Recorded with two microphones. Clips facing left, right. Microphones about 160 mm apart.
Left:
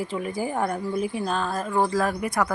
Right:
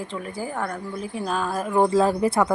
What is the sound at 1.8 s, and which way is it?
Speech, 25° right (ahead or behind).